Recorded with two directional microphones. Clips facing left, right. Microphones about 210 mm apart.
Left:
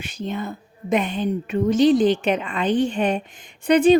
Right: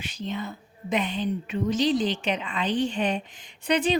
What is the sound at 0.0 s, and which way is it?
A woman's voice, 50° left (ahead or behind).